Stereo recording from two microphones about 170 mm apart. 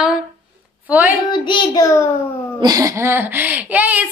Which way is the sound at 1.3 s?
25° left (ahead or behind).